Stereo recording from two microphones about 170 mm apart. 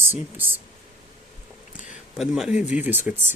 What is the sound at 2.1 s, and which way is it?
Speech, 5° right (ahead or behind).